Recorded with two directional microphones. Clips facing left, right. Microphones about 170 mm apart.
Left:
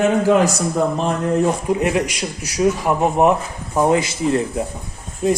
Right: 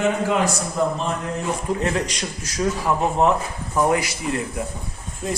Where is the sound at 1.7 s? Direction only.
15° left (ahead or behind).